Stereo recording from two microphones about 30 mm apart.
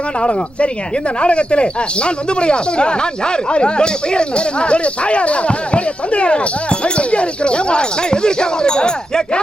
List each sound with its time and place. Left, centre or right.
0.2 s speech: left